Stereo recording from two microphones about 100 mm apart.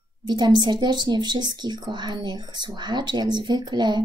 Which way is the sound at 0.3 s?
50° right (ahead or behind).